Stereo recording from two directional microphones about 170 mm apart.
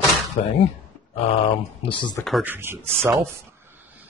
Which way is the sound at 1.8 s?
30° left (ahead or behind).